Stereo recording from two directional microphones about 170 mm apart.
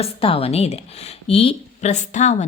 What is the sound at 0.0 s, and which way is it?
A woman's voice, 35° left (ahead or behind).